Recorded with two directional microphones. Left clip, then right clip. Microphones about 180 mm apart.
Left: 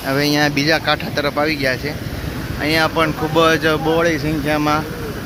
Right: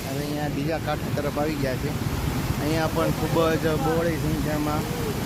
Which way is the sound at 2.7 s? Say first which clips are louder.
Left 9 dB; 10° left (ahead or behind).